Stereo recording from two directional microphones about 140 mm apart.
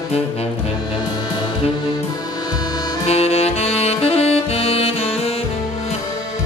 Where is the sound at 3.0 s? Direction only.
50° left (ahead or behind).